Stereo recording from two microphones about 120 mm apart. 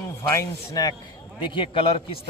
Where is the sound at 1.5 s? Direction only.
45° left (ahead or behind).